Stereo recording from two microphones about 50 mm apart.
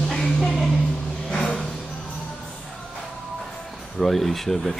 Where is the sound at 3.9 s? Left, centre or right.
Centre.